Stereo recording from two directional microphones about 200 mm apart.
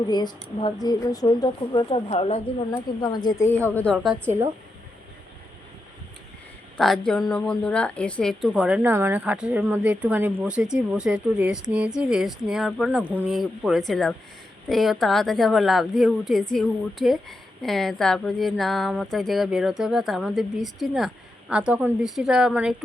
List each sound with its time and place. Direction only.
0.1 s speech: 20° left (ahead or behind)
3.8 s a woman's voice: centre (ahead or behind)
4.3 s a woman's voice: 15° right (ahead or behind)
6.7 s a woman's voice: centre (ahead or behind)